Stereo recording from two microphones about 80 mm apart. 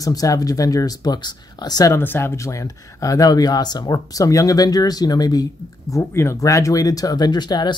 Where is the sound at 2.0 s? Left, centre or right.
Left.